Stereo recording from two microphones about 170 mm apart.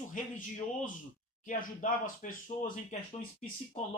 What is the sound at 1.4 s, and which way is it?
Speech, 50° left (ahead or behind).